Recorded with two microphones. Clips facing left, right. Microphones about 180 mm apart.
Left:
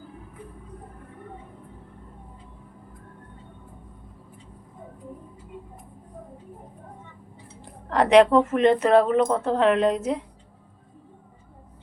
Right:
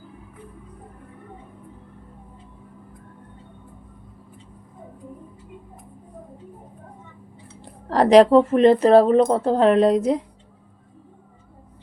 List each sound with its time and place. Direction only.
7.6 s speech: 35° right (ahead or behind)